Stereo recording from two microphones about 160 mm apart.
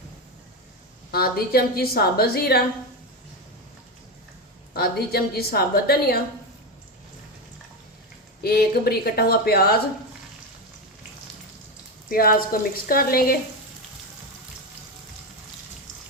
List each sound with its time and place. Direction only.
1.1 s a woman's voice: 70° left (ahead or behind)
4.7 s a woman's voice: 75° left (ahead or behind)
8.4 s a woman's voice: 75° left (ahead or behind)
12.1 s a woman's voice: 65° left (ahead or behind)